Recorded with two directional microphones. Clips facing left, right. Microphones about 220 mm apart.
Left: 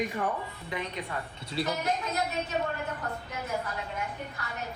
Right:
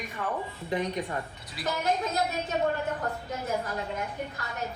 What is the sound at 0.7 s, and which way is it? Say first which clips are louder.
Speech: right 6 dB; 20° right (ahead or behind).